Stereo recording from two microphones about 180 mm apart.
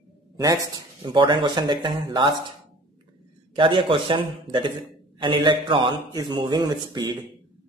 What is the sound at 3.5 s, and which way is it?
A man's voice, 25° right (ahead or behind).